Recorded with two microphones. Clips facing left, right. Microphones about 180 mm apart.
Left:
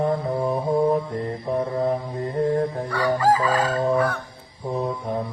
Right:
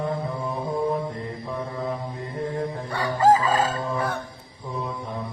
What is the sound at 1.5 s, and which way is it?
Mantra, 45° left (ahead or behind).